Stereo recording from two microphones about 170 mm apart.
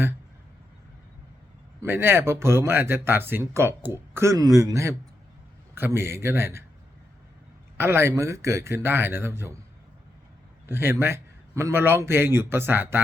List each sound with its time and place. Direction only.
1.8 s a man's voice: 15° right (ahead or behind)
7.8 s a man's voice: 15° right (ahead or behind)
10.7 s a man's voice: 15° right (ahead or behind)